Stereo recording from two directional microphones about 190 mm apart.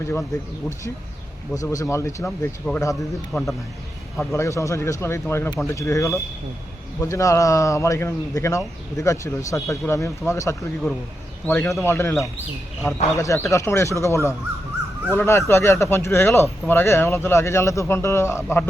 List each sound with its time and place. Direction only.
0.0 s speech: 10° left (ahead or behind)
1.6 s speech: 15° left (ahead or behind)
4.3 s speech: 15° left (ahead or behind)